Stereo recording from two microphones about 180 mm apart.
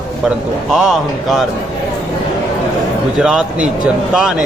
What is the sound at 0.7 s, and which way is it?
Speech, centre (ahead or behind).